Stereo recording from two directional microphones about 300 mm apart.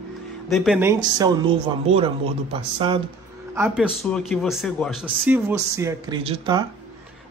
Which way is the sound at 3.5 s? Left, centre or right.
Centre.